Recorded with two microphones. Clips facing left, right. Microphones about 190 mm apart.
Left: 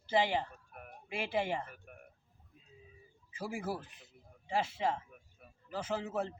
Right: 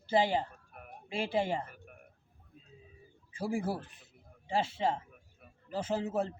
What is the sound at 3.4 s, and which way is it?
A man's voice, 30° right (ahead or behind).